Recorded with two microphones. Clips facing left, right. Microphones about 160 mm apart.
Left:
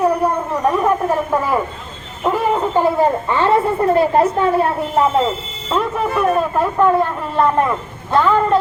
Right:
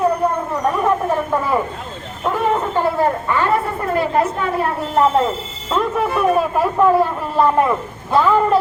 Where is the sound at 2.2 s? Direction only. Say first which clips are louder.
Left 2 dB; 10° left (ahead or behind); by 4.4 s 30° left (ahead or behind).